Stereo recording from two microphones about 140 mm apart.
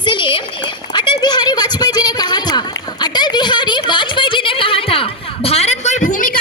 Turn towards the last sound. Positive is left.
turn(degrees=70)  # may be behind; listen again after turning